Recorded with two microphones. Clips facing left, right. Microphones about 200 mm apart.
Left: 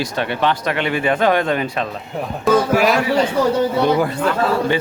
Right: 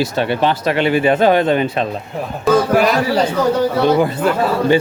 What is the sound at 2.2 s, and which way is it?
Speech, centre (ahead or behind).